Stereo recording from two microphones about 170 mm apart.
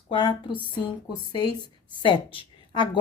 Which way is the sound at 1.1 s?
25° left (ahead or behind).